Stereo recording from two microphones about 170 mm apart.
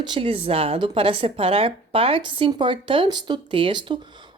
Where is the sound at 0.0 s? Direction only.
30° right (ahead or behind).